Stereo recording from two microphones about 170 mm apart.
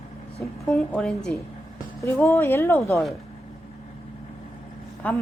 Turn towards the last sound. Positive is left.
turn(degrees=10)  # may be behind; listen again after turning